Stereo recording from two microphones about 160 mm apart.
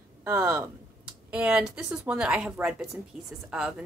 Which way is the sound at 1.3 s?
10° right (ahead or behind).